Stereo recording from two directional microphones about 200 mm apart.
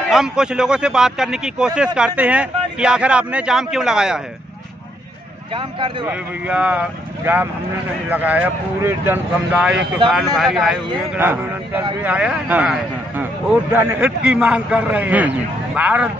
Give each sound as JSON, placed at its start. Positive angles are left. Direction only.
{"t": 0.1, "sound": "a man's voice", "side_deg": -5}
{"t": 5.5, "sound": "speech", "side_deg": -25}
{"t": 6.0, "sound": "a man's voice", "side_deg": -5}